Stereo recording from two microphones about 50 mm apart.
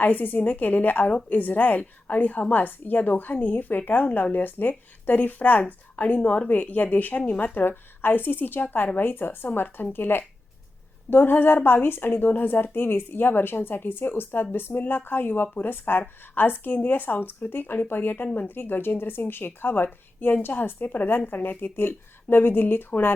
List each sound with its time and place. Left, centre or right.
0.0 s speech: left
8.6 s a woman's voice: left